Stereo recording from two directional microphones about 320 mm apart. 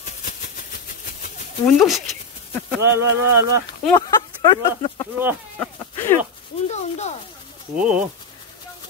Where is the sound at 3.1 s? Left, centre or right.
Right.